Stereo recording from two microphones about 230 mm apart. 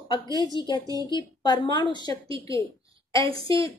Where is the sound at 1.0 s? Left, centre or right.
Centre.